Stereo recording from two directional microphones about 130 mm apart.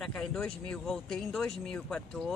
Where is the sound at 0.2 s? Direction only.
5° left (ahead or behind).